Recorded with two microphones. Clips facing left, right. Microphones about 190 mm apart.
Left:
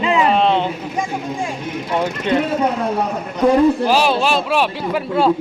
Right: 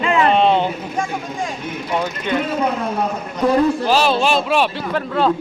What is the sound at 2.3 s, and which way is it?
Speech, 30° left (ahead or behind).